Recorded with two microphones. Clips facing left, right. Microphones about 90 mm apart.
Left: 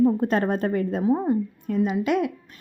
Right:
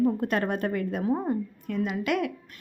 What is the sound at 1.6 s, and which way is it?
Speech, 20° left (ahead or behind).